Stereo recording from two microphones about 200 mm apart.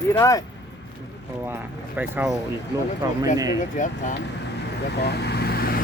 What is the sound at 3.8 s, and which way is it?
Speech, 40° left (ahead or behind).